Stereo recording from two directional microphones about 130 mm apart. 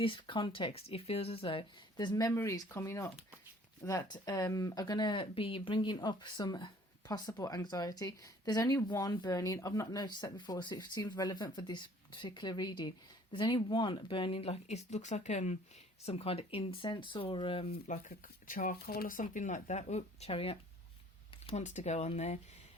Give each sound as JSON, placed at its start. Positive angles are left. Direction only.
{"t": 0.0, "sound": "speech", "side_deg": 40}
{"t": 16.0, "sound": "speech", "side_deg": 50}
{"t": 21.4, "sound": "speech", "side_deg": 60}